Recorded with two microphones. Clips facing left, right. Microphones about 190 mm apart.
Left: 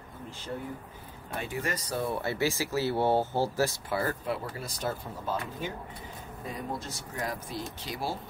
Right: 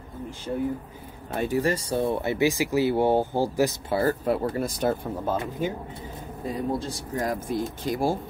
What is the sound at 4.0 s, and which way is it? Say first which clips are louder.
Speech: right 10 dB; 45° right (ahead or behind).